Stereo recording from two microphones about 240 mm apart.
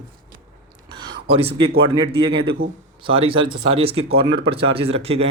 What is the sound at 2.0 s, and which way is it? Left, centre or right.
Speech, right.